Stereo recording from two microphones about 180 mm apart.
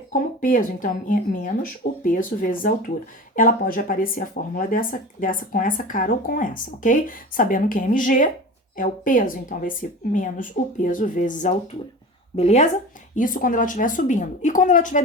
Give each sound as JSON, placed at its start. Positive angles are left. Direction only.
{"t": 0.1, "sound": "speech", "side_deg": 50}
{"t": 13.1, "sound": "speech", "side_deg": 50}